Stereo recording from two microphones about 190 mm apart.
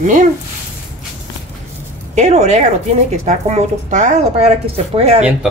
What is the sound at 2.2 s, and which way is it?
A woman's voice, 35° right (ahead or behind).